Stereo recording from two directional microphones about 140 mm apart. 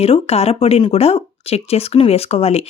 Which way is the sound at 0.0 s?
45° left (ahead or behind).